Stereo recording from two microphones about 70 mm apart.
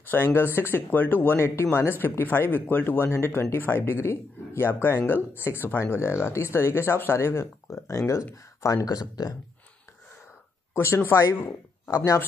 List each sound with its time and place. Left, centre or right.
0.1 s speech: left
8.6 s speech: left
10.7 s speech: left
11.9 s speech: left